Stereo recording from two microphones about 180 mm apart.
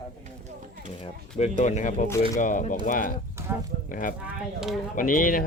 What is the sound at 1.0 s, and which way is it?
Speech, 35° left (ahead or behind).